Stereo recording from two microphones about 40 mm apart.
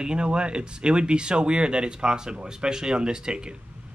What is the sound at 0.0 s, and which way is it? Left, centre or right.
Speech, right.